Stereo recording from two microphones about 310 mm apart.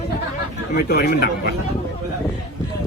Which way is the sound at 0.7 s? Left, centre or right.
Left.